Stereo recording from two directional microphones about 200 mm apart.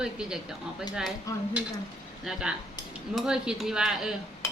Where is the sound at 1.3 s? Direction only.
15° left (ahead or behind).